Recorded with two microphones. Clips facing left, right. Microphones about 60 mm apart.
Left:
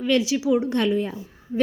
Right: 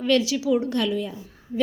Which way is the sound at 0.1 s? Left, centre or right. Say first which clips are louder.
Even; left.